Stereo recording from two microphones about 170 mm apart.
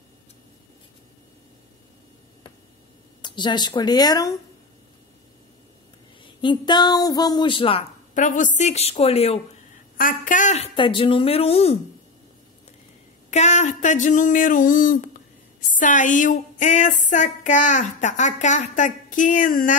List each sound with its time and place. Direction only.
3.2 s speech: 25° left (ahead or behind)
6.2 s speech: 30° left (ahead or behind)
8.1 s speech: 50° left (ahead or behind)
9.9 s speech: 55° left (ahead or behind); by 11.8 s 35° left (ahead or behind)
13.3 s a sound: 45° left (ahead or behind)